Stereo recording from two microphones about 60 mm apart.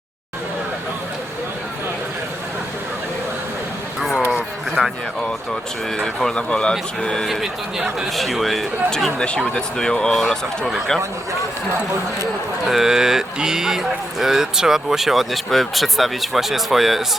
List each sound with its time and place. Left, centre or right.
4.8 s a sound: centre
6.0 s speech: centre
7.9 s speech: centre
12.6 s speech: centre